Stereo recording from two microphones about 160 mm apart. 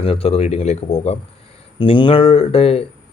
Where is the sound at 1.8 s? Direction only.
30° left (ahead or behind).